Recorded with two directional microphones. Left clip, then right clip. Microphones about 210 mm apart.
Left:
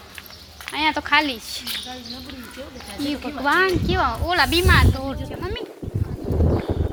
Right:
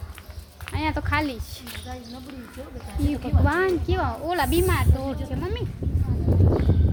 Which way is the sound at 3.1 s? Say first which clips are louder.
Left 6 dB; 15° right (ahead or behind).